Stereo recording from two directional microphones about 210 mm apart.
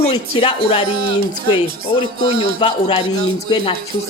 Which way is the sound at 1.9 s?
25° left (ahead or behind).